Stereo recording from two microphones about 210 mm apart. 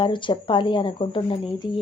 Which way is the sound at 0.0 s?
25° left (ahead or behind).